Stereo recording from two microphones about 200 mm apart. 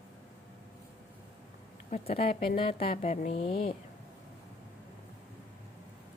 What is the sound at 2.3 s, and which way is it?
Speech, 45° left (ahead or behind).